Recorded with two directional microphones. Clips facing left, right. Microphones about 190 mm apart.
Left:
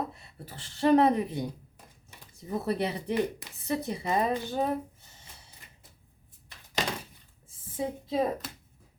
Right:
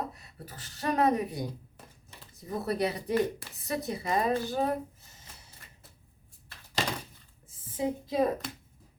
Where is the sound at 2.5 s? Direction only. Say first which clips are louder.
Even; 20° left (ahead or behind).